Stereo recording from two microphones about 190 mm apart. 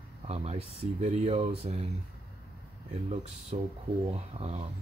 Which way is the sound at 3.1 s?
35° right (ahead or behind).